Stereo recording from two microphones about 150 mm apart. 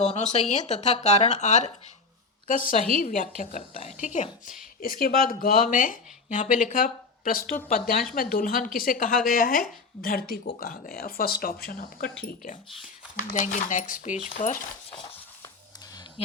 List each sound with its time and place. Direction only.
0.0 s speech: 50° left (ahead or behind)
2.5 s speech: 65° left (ahead or behind)
4.8 s speech: 75° left (ahead or behind); by 14.6 s 60° left (ahead or behind)
14.8 s a sound: 30° left (ahead or behind)